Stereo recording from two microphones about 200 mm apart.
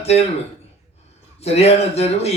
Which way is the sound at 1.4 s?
30° left (ahead or behind).